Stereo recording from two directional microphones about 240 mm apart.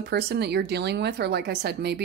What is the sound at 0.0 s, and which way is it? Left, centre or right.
A woman's voice, right.